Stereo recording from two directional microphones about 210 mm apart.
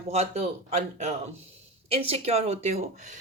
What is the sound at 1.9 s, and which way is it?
Speech, 30° right (ahead or behind).